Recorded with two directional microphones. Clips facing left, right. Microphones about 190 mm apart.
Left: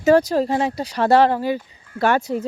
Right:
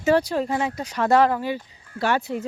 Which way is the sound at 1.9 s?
50° left (ahead or behind).